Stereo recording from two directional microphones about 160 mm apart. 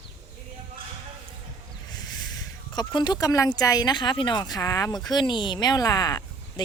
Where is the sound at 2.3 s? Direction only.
25° left (ahead or behind).